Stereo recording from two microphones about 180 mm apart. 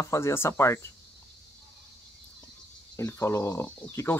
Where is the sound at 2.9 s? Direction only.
15° left (ahead or behind).